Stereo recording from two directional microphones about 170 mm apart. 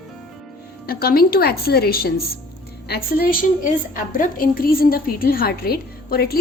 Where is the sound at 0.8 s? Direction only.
60° left (ahead or behind).